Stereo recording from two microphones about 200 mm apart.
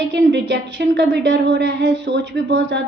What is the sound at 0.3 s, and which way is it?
A woman's voice, 60° right (ahead or behind).